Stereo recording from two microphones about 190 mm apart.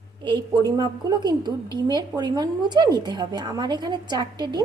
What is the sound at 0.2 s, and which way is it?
A woman's voice, 20° right (ahead or behind).